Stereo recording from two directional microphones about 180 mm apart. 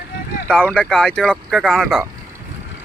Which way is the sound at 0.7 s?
5° left (ahead or behind).